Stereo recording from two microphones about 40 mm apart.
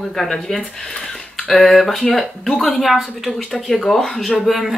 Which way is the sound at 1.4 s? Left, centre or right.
Centre.